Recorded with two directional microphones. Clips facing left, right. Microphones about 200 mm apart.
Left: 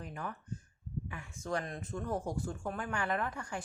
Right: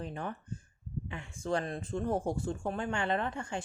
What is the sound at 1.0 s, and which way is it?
Speech, 25° right (ahead or behind).